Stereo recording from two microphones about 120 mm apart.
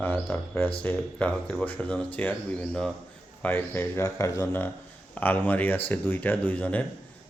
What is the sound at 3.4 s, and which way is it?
A man's voice, 15° left (ahead or behind).